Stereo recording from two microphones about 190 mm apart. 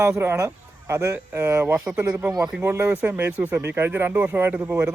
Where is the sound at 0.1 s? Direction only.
10° right (ahead or behind).